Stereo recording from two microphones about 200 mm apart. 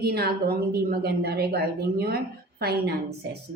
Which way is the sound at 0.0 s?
50° right (ahead or behind).